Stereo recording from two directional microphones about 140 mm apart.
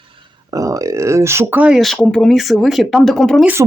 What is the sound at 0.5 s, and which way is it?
Speech, 25° right (ahead or behind).